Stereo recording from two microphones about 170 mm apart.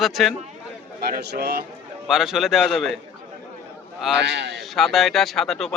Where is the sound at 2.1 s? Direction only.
Centre (ahead or behind).